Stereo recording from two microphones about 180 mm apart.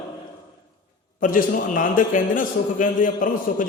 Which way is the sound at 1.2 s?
50° left (ahead or behind).